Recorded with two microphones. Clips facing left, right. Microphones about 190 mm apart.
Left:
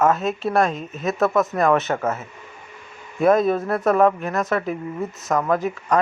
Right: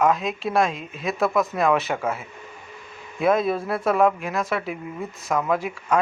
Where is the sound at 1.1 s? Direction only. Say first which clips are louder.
Left 2 dB; 10° right (ahead or behind).